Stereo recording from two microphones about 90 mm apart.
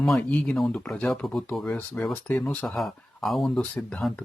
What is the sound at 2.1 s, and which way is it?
Speech, 20° left (ahead or behind).